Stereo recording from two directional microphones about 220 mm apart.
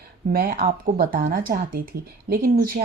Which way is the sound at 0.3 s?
45° right (ahead or behind).